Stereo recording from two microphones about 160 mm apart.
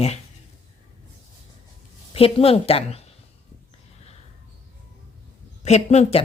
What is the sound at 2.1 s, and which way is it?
Speech, 35° left (ahead or behind).